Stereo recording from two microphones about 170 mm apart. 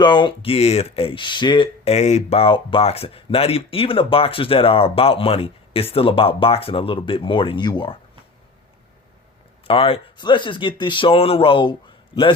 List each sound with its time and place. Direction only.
0.0 s speech: 25° left (ahead or behind)
9.6 s speech: 35° left (ahead or behind)